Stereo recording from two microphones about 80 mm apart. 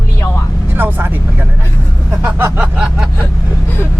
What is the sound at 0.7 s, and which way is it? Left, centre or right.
Vehicle, right.